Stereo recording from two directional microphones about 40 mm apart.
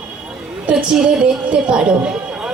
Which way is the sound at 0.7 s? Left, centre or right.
Centre.